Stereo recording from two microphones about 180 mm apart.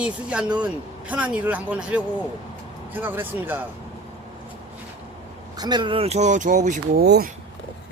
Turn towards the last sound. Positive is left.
turn(degrees=-60)  # may be behind; listen again after turning